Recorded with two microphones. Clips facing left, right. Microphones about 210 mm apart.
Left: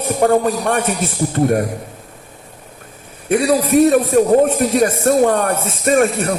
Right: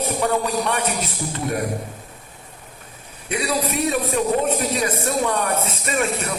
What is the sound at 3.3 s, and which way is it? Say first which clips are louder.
A man's voice: left 10 dB; 50° left (ahead or behind).